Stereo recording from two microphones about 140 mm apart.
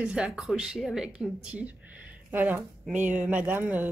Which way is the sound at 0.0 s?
5° right (ahead or behind).